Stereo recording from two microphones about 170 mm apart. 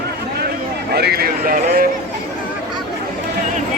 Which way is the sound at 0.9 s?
65° right (ahead or behind).